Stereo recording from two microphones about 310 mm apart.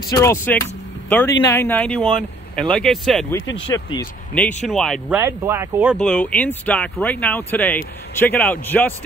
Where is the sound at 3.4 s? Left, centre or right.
Left.